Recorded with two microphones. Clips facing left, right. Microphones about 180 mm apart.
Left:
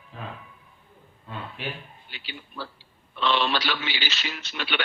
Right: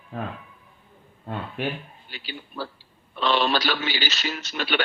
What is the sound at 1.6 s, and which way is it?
A man's voice, 50° right (ahead or behind).